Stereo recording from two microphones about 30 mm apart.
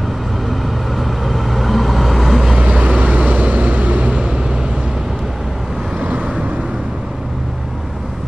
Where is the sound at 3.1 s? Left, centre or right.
Right.